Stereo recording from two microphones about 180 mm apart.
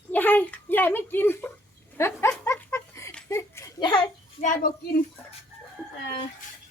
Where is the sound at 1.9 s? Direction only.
15° left (ahead or behind).